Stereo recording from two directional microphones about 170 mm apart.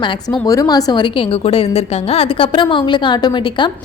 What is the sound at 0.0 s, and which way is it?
A woman's voice, 20° left (ahead or behind).